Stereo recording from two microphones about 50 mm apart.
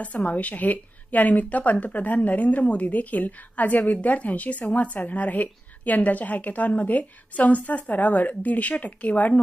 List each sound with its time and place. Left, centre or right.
0.3 s speech: left